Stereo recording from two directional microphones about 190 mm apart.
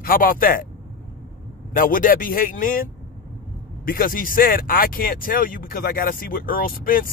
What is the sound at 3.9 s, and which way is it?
Speech, 50° left (ahead or behind).